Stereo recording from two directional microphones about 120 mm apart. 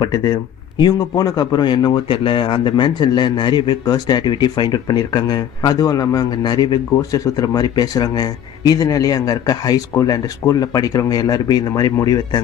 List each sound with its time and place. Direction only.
0.0 s speech: 35° left (ahead or behind)